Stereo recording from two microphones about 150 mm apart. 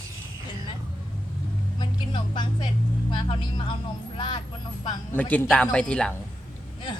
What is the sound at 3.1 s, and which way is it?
Speech, 30° left (ahead or behind).